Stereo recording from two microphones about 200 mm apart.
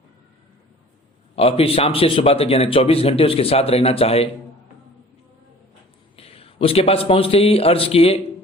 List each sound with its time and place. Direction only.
1.4 s speech: 30° left (ahead or behind)
6.1 s a man's voice: 30° left (ahead or behind)